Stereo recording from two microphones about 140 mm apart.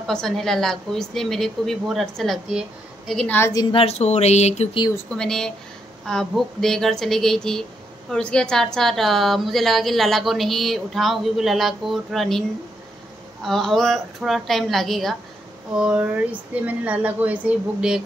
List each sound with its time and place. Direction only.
0.0 s a woman's voice: 5° left (ahead or behind)
3.3 s a woman's voice: 20° left (ahead or behind)
3.7 s speech: 45° left (ahead or behind)
5.1 s a woman's voice: 5° left (ahead or behind)